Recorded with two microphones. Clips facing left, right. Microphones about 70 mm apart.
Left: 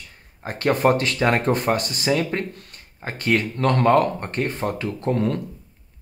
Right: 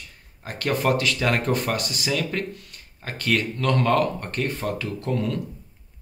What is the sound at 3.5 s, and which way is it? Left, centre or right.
Speech, left.